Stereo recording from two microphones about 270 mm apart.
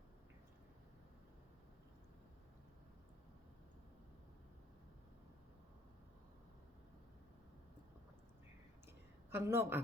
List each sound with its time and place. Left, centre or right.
9.3 s a woman's voice: centre